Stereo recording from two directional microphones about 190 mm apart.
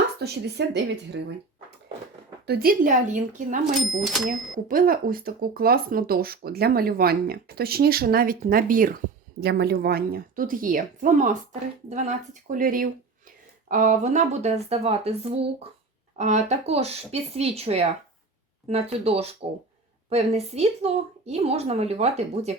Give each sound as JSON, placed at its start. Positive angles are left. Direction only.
{"t": 0.2, "sound": "speech", "side_deg": -60}
{"t": 2.5, "sound": "speech", "side_deg": -50}
{"t": 4.0, "sound": "speech", "side_deg": 0}
{"t": 4.5, "sound": "speech", "side_deg": -50}
{"t": 9.4, "sound": "a woman's voice", "side_deg": -60}